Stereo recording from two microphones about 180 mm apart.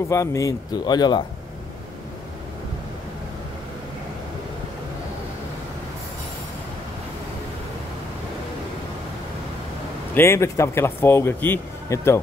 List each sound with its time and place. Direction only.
0.1 s speech: 15° left (ahead or behind)
10.1 s speech: 15° left (ahead or behind)